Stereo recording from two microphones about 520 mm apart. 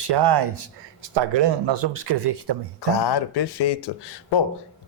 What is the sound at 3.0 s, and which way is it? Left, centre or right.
Speech, left.